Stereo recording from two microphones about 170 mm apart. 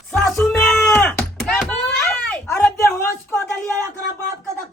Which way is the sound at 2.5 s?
15° left (ahead or behind).